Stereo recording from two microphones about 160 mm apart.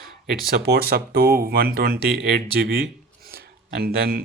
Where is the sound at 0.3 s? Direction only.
80° right.